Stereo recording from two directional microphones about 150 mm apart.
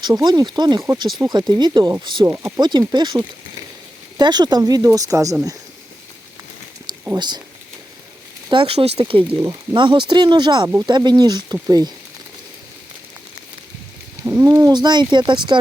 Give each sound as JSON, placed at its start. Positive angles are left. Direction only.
{"t": 0.2, "sound": "speech", "side_deg": -30}
{"t": 2.2, "sound": "speech", "side_deg": -20}
{"t": 2.6, "sound": "speech", "side_deg": -30}
{"t": 7.2, "sound": "speech", "side_deg": -30}
{"t": 8.4, "sound": "speech", "side_deg": -35}
{"t": 14.3, "sound": "speech", "side_deg": -20}